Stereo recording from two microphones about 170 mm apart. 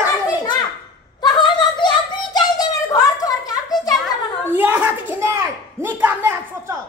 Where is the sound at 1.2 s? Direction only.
25° left (ahead or behind).